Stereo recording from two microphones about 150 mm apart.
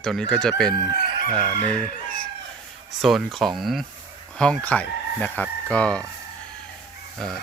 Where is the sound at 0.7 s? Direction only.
90° left.